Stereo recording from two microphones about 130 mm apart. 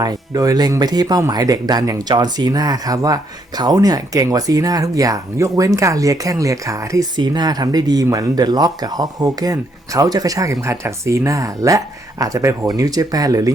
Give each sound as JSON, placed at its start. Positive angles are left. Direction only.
{"t": 0.0, "sound": "speech", "side_deg": -30}